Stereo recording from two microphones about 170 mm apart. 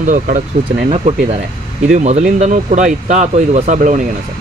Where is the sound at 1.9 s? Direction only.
45° right (ahead or behind).